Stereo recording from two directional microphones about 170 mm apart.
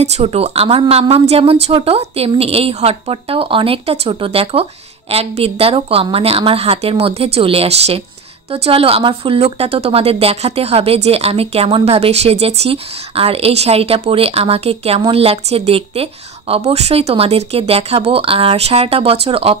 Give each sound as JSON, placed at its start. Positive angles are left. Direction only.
{"t": 0.0, "sound": "a woman's voice", "side_deg": -40}